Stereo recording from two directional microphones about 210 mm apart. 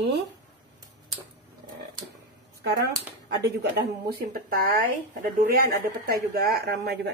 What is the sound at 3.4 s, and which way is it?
Speech, 50° right (ahead or behind).